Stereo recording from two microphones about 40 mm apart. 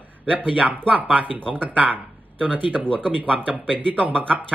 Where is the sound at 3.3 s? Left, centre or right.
Right.